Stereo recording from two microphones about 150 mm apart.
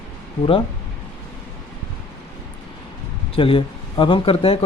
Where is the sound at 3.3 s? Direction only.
35° left (ahead or behind).